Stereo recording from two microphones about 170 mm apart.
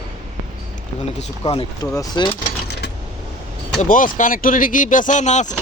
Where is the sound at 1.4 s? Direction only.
30° left (ahead or behind).